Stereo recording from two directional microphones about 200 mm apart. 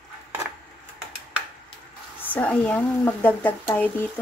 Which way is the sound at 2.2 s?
10° left (ahead or behind).